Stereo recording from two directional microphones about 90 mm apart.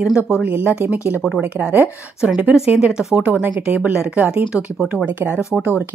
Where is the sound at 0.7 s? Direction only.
15° right (ahead or behind).